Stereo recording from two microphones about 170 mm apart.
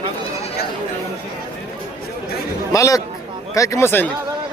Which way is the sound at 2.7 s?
20° left (ahead or behind).